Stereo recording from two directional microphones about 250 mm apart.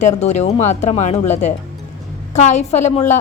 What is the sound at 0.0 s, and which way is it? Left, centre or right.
A woman's voice, left.